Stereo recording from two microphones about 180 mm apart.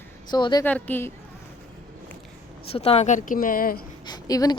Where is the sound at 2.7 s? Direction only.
35° left (ahead or behind); by 3.8 s 50° left (ahead or behind).